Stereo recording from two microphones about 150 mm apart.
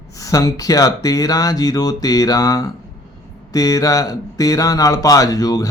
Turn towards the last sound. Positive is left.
turn(degrees=25)  # may be behind; listen again after turning